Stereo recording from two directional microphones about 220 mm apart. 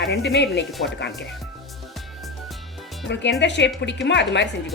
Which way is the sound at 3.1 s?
50° left (ahead or behind).